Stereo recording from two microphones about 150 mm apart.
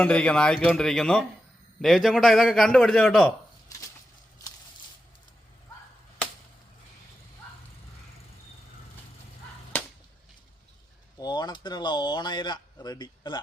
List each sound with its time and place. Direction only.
0.0 s a man's voice: 5° left (ahead or behind)
11.2 s speech: 30° left (ahead or behind)